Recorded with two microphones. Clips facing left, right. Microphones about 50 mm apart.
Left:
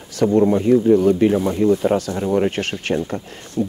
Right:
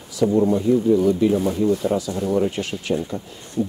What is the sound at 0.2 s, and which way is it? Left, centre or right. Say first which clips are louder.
Speech: left 3 dB; left.